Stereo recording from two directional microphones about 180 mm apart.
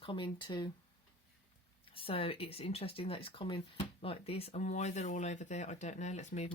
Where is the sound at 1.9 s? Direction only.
30° left (ahead or behind).